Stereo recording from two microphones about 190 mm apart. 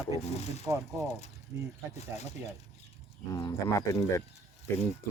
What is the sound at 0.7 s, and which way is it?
Speech, 15° right (ahead or behind).